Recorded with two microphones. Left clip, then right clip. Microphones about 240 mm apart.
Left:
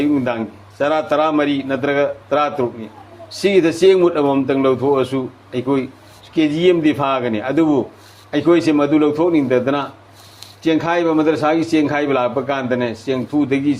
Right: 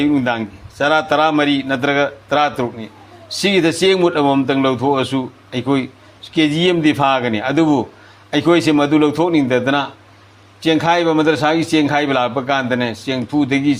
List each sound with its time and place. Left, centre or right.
0.0 s a man's voice: right